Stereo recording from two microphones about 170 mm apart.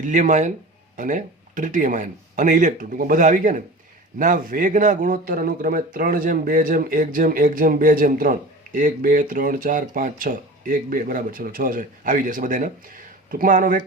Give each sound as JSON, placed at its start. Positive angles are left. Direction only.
{"t": 0.0, "sound": "speech", "side_deg": -45}